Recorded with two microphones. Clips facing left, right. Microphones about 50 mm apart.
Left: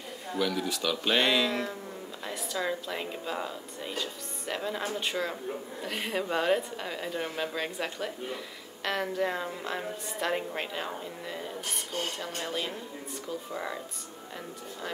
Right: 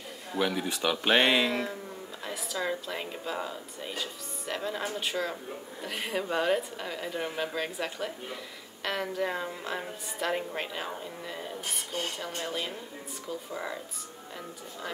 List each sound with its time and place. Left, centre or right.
0.4 s speech: right
1.5 s a woman's voice: centre